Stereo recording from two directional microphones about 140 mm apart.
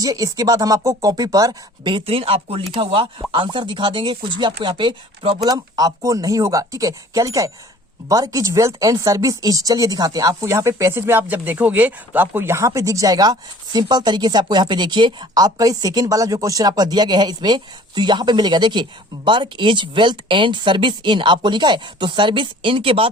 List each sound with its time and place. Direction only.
0.0 s speech: 25° right (ahead or behind)
5.4 s speech: 25° right (ahead or behind)